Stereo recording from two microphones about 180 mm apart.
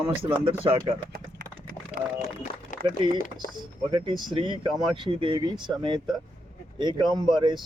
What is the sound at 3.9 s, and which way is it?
Speech, 30° right (ahead or behind).